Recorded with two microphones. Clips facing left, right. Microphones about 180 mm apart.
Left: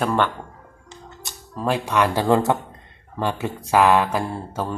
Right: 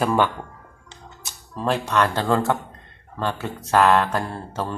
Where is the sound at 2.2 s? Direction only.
15° left (ahead or behind).